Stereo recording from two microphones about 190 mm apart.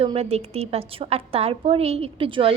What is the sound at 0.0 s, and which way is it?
A woman's voice, 30° right (ahead or behind).